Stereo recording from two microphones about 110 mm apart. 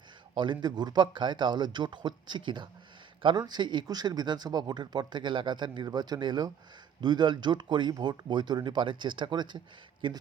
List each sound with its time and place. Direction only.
0.3 s speech: 45° right (ahead or behind)